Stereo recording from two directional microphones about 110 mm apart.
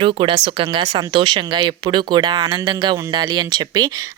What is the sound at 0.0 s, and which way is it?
A woman's voice, 50° right (ahead or behind).